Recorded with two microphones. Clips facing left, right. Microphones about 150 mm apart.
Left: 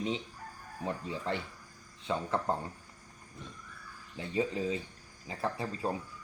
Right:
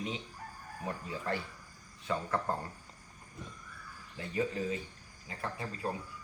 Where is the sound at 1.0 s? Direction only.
20° left (ahead or behind).